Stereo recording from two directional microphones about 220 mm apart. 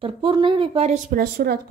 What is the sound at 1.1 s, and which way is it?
Speech, 40° right (ahead or behind).